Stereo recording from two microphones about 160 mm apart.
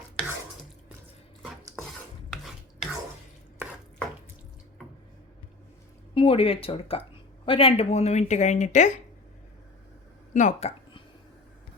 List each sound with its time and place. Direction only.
2.3 s filing: centre (ahead or behind)
6.1 s speech: 35° left (ahead or behind)
10.3 s speech: 45° left (ahead or behind)